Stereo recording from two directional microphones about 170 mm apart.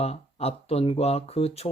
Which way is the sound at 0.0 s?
35° left (ahead or behind).